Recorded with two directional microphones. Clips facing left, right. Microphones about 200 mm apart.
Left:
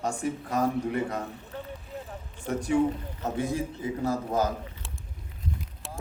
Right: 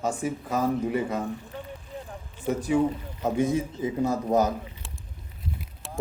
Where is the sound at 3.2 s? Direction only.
15° right (ahead or behind).